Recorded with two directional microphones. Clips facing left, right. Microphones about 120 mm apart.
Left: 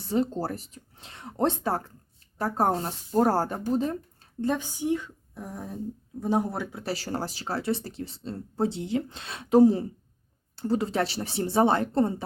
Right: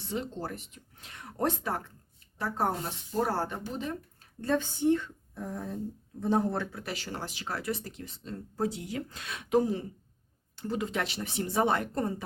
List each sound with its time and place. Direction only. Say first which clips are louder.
0.0 s speech: left 8 dB; 40° left (ahead or behind)
4.4 s speech: left 1 dB; 15° left (ahead or behind)
6.8 s speech: left 6 dB; 35° left (ahead or behind)